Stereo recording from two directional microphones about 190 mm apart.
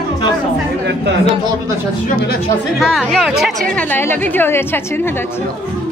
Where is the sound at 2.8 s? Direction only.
Centre (ahead or behind).